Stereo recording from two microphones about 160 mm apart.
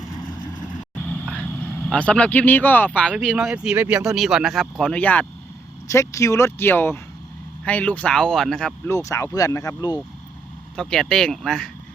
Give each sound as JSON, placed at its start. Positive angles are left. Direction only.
{"t": 0.2, "sound": "vehicle", "side_deg": 25}
{"t": 1.4, "sound": "speech", "side_deg": 5}
{"t": 8.9, "sound": "speech", "side_deg": 20}
{"t": 10.8, "sound": "speech", "side_deg": 5}